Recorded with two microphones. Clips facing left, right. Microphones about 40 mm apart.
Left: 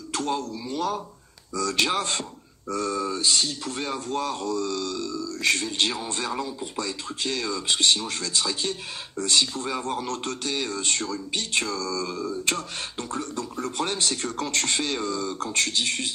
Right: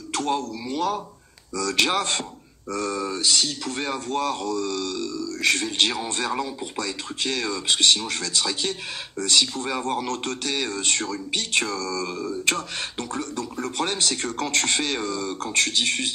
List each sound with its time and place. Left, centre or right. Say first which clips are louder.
0.1 s a man's voice: right 2 dB; right